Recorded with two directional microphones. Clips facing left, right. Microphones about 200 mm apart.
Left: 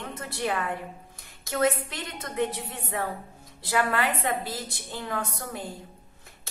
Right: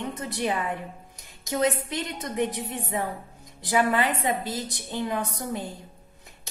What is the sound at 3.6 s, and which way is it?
A woman's voice, 15° right (ahead or behind).